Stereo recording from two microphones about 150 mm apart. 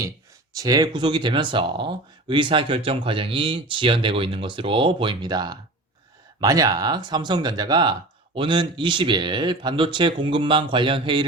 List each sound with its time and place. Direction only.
0.5 s speech: 25° right (ahead or behind)